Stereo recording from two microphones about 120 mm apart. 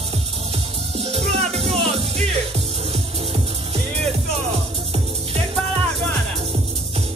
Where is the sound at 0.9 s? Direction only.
60° right (ahead or behind).